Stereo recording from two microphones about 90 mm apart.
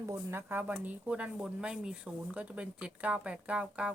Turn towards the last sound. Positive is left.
turn(degrees=-10)  # may be behind; listen again after turning